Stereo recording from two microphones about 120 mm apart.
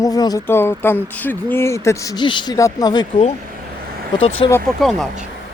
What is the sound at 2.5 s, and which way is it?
Speech, 30° left (ahead or behind).